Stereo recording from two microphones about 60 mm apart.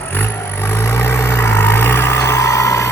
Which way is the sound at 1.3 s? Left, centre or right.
Left.